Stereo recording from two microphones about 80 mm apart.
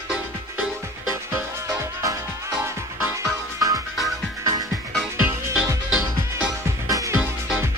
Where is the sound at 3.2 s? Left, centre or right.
Right.